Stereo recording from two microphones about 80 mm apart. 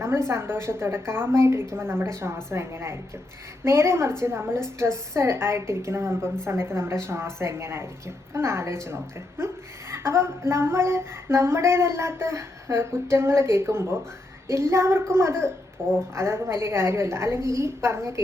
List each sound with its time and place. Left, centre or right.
0.3 s a woman's voice: right
15.8 s a woman's voice: centre
16.1 s a woman's voice: right